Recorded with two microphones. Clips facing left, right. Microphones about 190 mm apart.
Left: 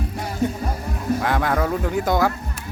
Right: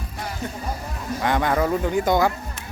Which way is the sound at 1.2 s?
Centre (ahead or behind).